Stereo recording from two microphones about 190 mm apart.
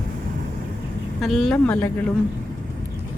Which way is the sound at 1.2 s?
Centre (ahead or behind).